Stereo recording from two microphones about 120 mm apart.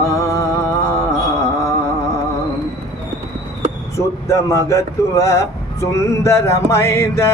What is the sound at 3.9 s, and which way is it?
Speech, 25° left (ahead or behind).